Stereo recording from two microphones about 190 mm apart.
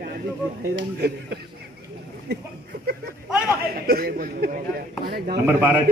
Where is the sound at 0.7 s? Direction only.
60° right (ahead or behind).